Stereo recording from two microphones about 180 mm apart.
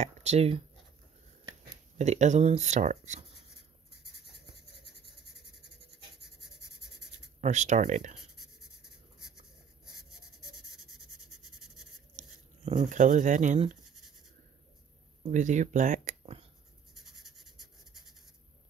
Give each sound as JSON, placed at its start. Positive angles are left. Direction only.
{"t": 0.0, "sound": "speech", "side_deg": -40}
{"t": 2.0, "sound": "speech", "side_deg": -40}
{"t": 7.3, "sound": "speech", "side_deg": -40}
{"t": 8.2, "sound": "writing", "side_deg": 0}
{"t": 9.8, "sound": "writing", "side_deg": 0}
{"t": 12.2, "sound": "speech", "side_deg": -35}
{"t": 15.2, "sound": "speech", "side_deg": -40}
{"t": 16.9, "sound": "writing", "side_deg": 0}